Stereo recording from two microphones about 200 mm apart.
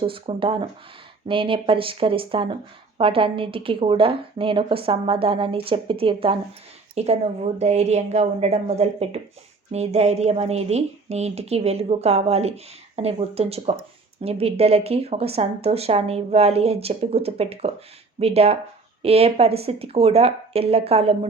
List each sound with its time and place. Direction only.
0.0 s a woman's voice: 25° right (ahead or behind)